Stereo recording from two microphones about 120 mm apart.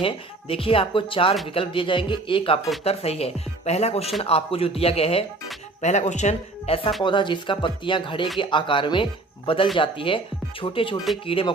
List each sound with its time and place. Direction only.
0.0 s speech: 50° left (ahead or behind)
2.8 s speech: 55° left (ahead or behind)
5.8 s a man's voice: 70° left (ahead or behind)
7.0 s speech: 40° left (ahead or behind)